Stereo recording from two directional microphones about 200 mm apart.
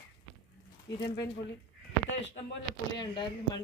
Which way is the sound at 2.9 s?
20° left (ahead or behind).